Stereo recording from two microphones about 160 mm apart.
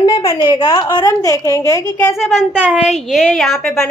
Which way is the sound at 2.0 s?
Centre (ahead or behind).